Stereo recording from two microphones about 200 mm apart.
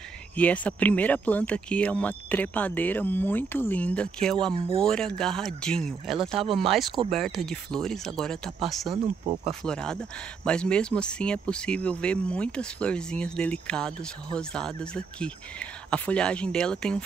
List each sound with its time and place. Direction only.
0.4 s speech: 5° left (ahead or behind)
8.9 s speech: 30° right (ahead or behind)
9.7 s speech: 5° left (ahead or behind)